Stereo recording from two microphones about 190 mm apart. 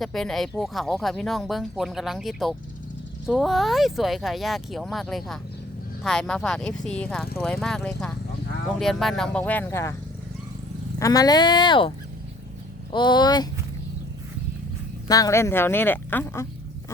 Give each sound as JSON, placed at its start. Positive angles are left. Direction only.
{"t": 0.0, "sound": "speech", "side_deg": 0}
{"t": 11.0, "sound": "speech", "side_deg": 20}
{"t": 15.0, "sound": "speech", "side_deg": 20}